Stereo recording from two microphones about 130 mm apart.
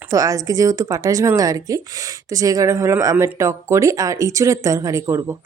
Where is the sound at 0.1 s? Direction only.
25° right (ahead or behind).